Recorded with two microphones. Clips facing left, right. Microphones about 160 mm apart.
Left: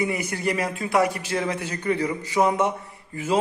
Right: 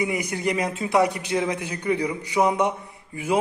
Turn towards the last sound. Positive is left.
turn(degrees=-15)  # may be behind; listen again after turning